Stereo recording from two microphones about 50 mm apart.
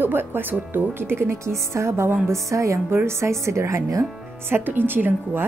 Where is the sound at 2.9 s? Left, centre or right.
Right.